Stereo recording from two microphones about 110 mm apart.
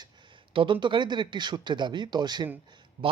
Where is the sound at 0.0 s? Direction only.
50° right (ahead or behind).